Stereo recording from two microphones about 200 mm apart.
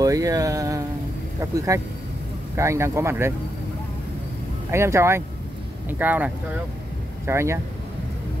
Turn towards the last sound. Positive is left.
turn(degrees=-15)  # may be behind; listen again after turning